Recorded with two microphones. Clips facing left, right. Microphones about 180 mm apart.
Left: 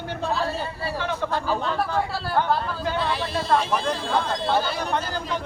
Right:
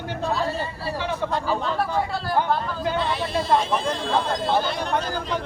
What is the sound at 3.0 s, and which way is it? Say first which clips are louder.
Speech: right 1 dB; centre (ahead or behind).